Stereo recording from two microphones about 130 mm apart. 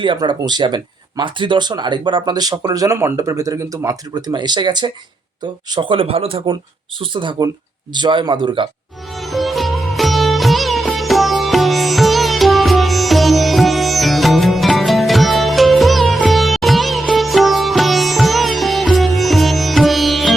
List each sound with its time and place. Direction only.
0.0 s speech: 40° right (ahead or behind)
9.2 s music: centre (ahead or behind)